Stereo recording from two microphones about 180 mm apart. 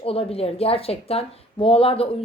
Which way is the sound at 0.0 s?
30° left (ahead or behind).